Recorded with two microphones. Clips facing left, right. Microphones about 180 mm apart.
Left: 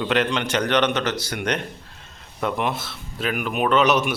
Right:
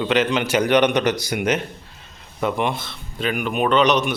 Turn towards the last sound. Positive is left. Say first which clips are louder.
# right 1 dB
turn(degrees=5)  # may be behind; listen again after turning